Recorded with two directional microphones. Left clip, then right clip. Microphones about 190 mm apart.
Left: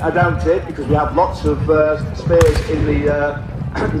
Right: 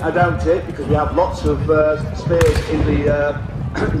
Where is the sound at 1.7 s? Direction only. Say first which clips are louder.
Left 1 dB; 40° left (ahead or behind).